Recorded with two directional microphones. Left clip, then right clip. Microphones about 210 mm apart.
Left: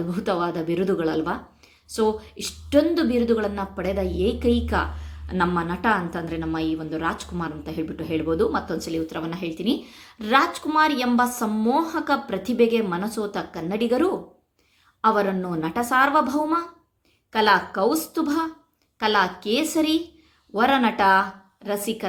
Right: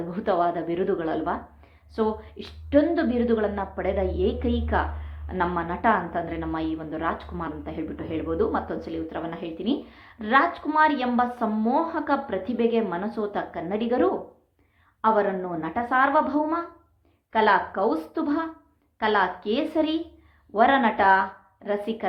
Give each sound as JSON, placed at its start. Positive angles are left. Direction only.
{"t": 0.1, "sound": "a woman's voice", "side_deg": 25}